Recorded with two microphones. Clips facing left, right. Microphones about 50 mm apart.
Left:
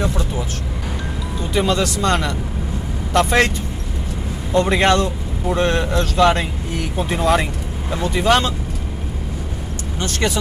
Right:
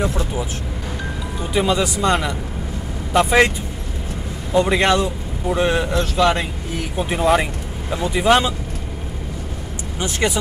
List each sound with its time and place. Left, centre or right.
0.1 s speech: centre
4.5 s speech: centre
9.9 s speech: centre